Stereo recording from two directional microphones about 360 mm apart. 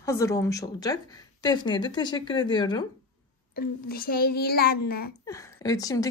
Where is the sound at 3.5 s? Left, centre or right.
Left.